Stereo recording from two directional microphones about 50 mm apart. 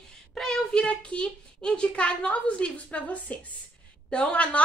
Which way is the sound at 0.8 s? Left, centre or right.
Left.